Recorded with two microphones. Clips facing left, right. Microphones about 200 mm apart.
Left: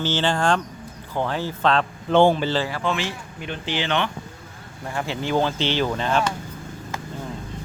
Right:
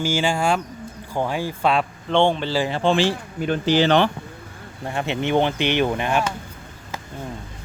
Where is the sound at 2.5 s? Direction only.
20° right (ahead or behind); by 4.1 s 35° right (ahead or behind).